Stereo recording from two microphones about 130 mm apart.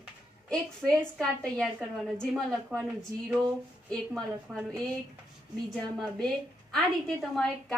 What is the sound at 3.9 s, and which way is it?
Speech, 5° left (ahead or behind).